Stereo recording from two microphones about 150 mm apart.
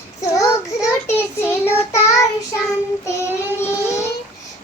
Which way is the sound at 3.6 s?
15° left (ahead or behind).